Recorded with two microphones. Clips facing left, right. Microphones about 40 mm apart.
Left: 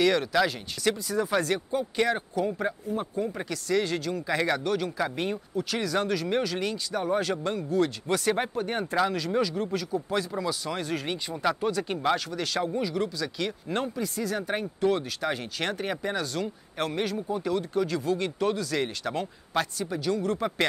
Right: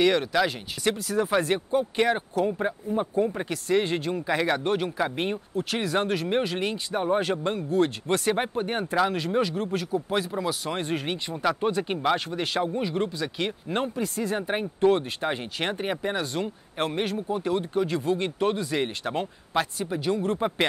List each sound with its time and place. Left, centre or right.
0.0 s speech: centre
0.9 s speech: right
1.3 s a man's voice: right
14.0 s speech: right
15.3 s a man's voice: right